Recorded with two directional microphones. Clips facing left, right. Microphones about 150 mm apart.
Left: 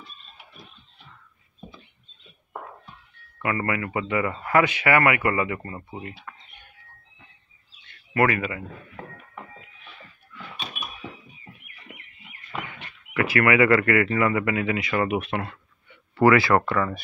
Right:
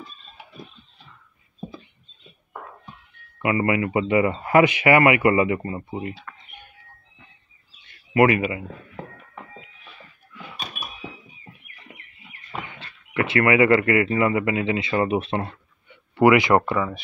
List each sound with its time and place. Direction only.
3.3 s speech: 15° right (ahead or behind)
8.1 s speech: 15° right (ahead or behind)
13.1 s speech: 25° right (ahead or behind)